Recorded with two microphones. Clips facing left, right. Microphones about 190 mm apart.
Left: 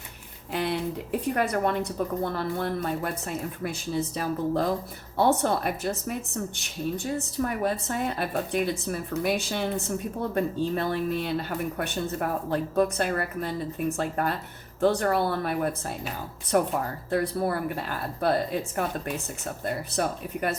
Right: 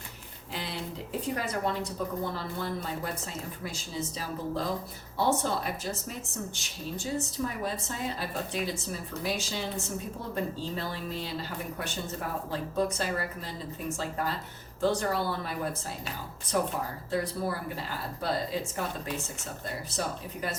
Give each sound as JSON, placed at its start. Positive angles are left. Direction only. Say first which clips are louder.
{"t": 0.5, "sound": "a sound", "louder": "left 10 dB", "side_deg": 60}
{"t": 1.4, "sound": "a woman's voice", "louder": "left 8 dB", "side_deg": 60}
{"t": 19.6, "sound": "a woman's voice", "louder": "left 6 dB", "side_deg": 60}